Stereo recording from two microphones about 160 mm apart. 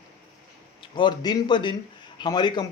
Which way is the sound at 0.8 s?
30° left (ahead or behind).